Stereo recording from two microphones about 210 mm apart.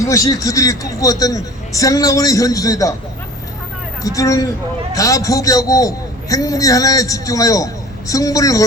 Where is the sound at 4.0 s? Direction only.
15° left (ahead or behind).